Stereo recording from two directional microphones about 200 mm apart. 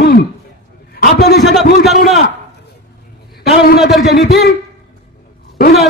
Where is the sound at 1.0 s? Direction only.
50° left (ahead or behind).